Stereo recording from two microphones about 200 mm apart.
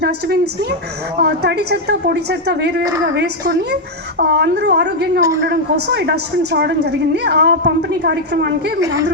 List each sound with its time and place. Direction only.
0.0 s a woman's voice: 55° right (ahead or behind)